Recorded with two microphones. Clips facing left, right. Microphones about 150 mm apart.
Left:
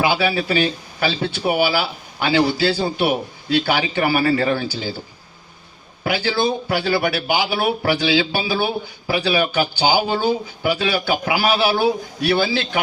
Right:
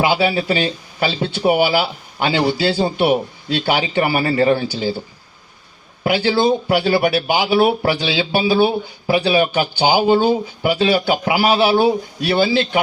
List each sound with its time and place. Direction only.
0.0 s speech: 25° right (ahead or behind)
6.0 s speech: 25° right (ahead or behind)